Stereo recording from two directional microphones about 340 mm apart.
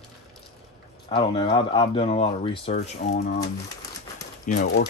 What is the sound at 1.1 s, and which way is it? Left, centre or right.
Speech, centre.